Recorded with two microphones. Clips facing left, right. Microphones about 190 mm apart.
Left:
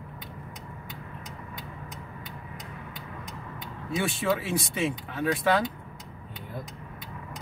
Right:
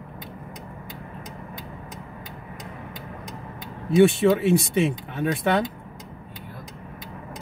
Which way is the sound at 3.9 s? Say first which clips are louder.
Right 11 dB; 25° right (ahead or behind).